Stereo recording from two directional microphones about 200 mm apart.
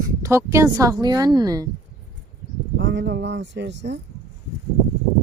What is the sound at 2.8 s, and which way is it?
Speech, 60° right (ahead or behind).